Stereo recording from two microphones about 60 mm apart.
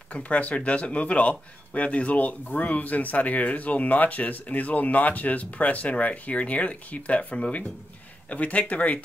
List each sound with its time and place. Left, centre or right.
0.1 s speech: left